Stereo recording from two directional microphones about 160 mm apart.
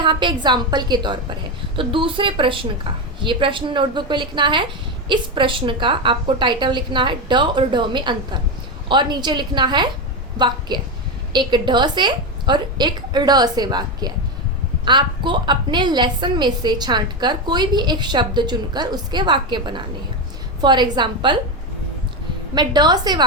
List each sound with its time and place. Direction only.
0.0 s a woman's voice: 30° right (ahead or behind)
22.5 s a woman's voice: 25° right (ahead or behind)